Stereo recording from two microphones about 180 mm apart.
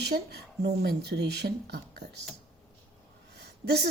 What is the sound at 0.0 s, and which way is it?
Speech, 65° right (ahead or behind).